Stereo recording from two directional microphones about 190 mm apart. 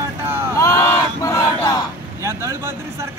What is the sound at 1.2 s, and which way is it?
Battle cry, 15° left (ahead or behind).